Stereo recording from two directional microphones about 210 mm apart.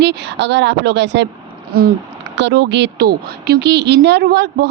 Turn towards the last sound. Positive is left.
turn(degrees=-50)  # may be behind; listen again after turning